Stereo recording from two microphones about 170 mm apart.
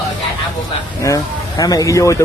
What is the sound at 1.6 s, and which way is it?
Speech, 20° left (ahead or behind).